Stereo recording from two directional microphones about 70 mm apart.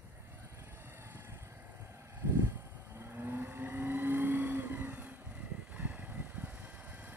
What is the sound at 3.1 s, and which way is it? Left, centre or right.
Vehicle, right.